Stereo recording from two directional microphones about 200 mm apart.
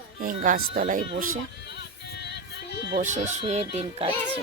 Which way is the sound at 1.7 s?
55° left (ahead or behind).